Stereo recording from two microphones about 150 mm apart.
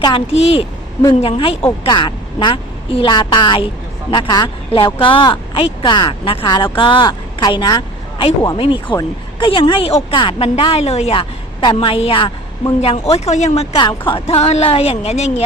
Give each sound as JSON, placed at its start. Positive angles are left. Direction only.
{"t": 0.0, "sound": "a woman's voice", "side_deg": 40}
{"t": 13.7, "sound": "a woman's voice", "side_deg": 30}